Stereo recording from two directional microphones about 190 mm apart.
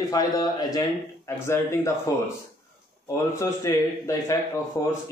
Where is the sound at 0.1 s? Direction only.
20° left (ahead or behind).